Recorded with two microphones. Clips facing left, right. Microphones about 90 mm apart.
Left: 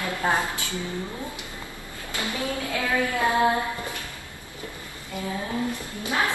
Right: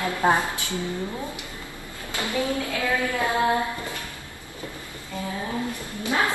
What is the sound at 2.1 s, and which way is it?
Speech, 20° right (ahead or behind).